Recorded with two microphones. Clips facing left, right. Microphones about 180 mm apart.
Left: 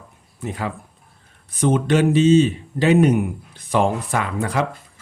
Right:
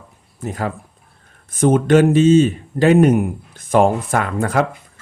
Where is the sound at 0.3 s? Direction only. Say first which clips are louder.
Right 3 dB; 45° right (ahead or behind).